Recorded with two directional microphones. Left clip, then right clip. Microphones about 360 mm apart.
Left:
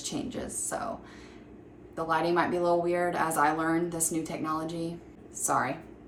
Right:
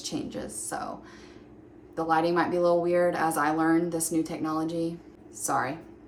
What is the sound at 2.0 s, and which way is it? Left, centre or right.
Speech, centre.